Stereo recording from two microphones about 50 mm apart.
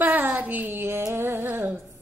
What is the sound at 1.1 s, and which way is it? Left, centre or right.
Music, right.